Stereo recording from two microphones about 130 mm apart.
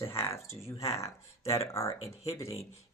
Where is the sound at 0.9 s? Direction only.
20° left (ahead or behind).